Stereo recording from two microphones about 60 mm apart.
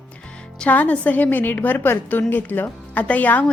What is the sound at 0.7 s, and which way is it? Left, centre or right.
A woman's voice, left.